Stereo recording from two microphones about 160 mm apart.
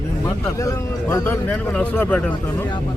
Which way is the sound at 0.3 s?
20° left (ahead or behind).